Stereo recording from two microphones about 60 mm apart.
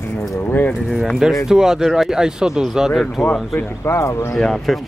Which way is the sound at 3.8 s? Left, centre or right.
Left.